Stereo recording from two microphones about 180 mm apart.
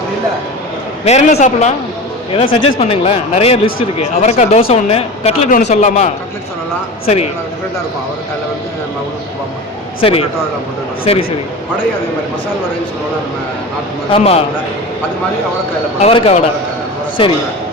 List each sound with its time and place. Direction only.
1.0 s speech: 40° left (ahead or behind)
2.3 s speech: 30° left (ahead or behind)
10.0 s speech: 30° left (ahead or behind)
14.1 s speech: 35° left (ahead or behind)
16.0 s speech: 35° left (ahead or behind)